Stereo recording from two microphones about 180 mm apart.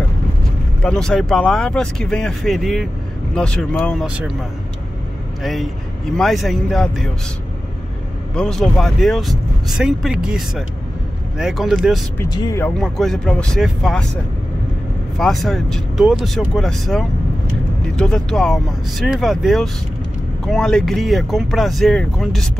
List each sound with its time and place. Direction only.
0.8 s speech: 5° left (ahead or behind)
8.4 s speech: centre (ahead or behind)
12.2 s speech: 20° left (ahead or behind)
12.6 s speech: centre (ahead or behind)
15.1 s speech: centre (ahead or behind)